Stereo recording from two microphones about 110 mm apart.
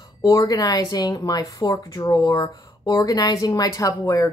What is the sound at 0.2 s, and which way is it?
A woman's voice, 30° left (ahead or behind).